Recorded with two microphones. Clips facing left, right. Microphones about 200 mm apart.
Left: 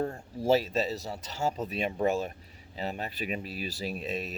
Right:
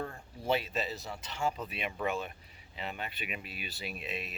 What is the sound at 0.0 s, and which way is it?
Speech, 40° left (ahead or behind).